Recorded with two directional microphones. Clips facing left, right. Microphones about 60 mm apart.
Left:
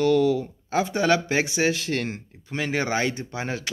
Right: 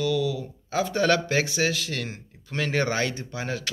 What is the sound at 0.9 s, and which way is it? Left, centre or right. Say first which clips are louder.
Speech: even; centre.